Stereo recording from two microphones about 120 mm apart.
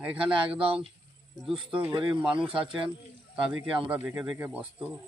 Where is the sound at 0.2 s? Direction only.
45° right (ahead or behind).